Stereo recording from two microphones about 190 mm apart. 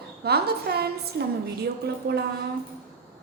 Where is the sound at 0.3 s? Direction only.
55° right (ahead or behind).